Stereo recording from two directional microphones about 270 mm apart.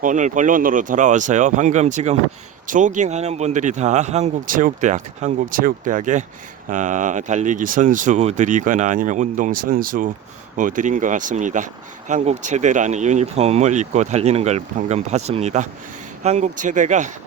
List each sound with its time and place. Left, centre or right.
0.0 s speech: right